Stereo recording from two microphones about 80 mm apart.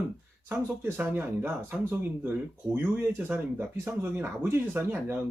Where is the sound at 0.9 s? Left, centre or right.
Right.